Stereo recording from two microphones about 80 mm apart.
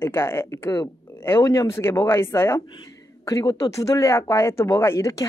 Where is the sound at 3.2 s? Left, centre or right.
Left.